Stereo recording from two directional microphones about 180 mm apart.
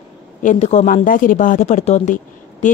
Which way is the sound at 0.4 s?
40° left (ahead or behind).